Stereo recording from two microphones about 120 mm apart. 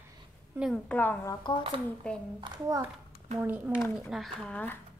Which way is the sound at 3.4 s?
15° right (ahead or behind).